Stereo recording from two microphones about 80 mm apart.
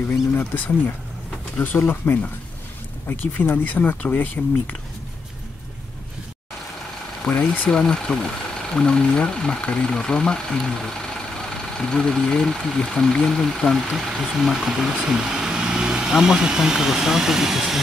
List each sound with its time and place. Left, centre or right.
0.4 s speech: left
7.2 s speech: left
7.8 s speech: centre